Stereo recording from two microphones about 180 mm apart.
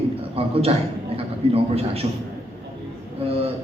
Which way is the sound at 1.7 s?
35° right (ahead or behind).